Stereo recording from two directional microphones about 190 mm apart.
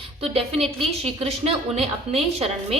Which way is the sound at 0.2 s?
30° right (ahead or behind).